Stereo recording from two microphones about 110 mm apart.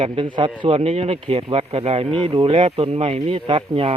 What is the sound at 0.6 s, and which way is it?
Speech, 60° right (ahead or behind).